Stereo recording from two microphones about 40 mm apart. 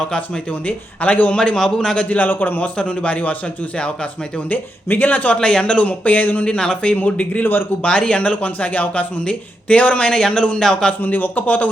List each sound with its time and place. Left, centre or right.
1.0 s speech: left
1.5 s a man's voice: centre
2.0 s a man's voice: left
2.8 s speech: left
4.4 s a man's voice: left
5.3 s a man's voice: left
5.8 s speech: left
7.8 s speech: left
10.1 s a man's voice: centre
11.0 s speech: left